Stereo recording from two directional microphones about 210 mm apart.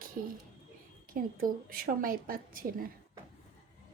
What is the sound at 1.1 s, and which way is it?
Speech, 45° right (ahead or behind).